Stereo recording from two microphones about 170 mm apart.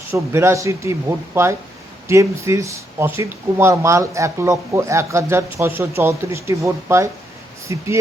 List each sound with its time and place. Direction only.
0.1 s speech: 15° right (ahead or behind)